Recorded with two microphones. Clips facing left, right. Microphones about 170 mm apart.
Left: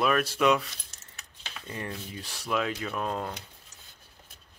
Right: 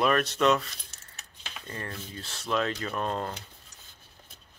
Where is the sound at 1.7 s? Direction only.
15° left (ahead or behind).